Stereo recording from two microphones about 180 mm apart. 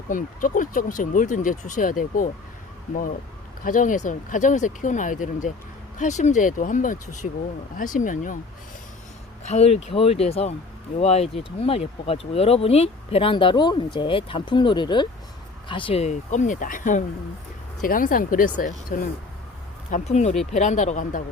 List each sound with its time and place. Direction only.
0.1 s speech: 45° left (ahead or behind)
3.6 s speech: 50° left (ahead or behind)
9.4 s speech: 40° left (ahead or behind)